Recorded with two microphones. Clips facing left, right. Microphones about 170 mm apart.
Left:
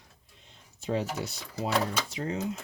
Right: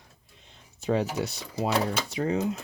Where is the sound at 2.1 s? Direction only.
70° right (ahead or behind).